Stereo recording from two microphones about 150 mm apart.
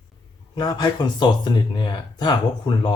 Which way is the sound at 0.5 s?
30° left (ahead or behind).